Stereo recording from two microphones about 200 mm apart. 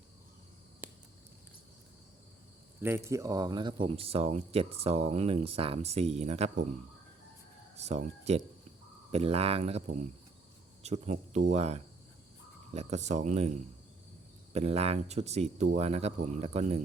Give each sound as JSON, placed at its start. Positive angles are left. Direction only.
{"t": 2.8, "sound": "speech", "side_deg": -15}
{"t": 7.8, "sound": "speech", "side_deg": -35}
{"t": 14.5, "sound": "speech", "side_deg": -30}